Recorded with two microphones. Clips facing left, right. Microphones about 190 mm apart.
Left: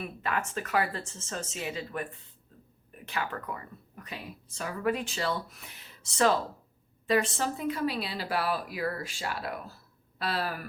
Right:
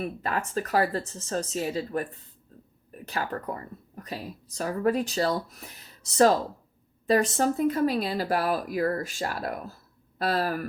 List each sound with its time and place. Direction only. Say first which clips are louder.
0.0 s speech: right 3 dB; 35° right (ahead or behind)